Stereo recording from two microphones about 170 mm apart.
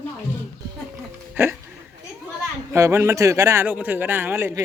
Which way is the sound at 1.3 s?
15° right (ahead or behind).